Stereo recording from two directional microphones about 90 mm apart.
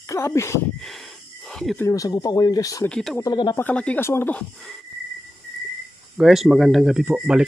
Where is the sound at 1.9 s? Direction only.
40° left (ahead or behind).